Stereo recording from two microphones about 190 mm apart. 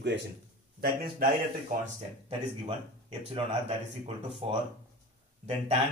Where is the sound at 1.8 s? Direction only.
30° right (ahead or behind).